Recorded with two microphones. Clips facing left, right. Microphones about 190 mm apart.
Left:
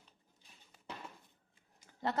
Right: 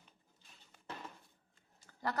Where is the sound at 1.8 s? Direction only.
20° left (ahead or behind).